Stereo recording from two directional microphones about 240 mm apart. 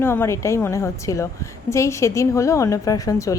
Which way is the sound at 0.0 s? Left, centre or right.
Centre.